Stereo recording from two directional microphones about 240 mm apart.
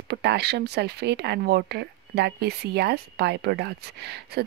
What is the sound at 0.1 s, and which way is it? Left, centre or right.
Speech, right.